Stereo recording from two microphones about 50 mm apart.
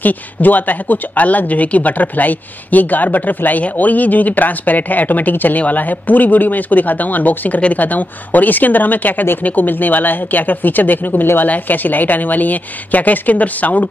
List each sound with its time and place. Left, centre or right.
0.0 s speech: left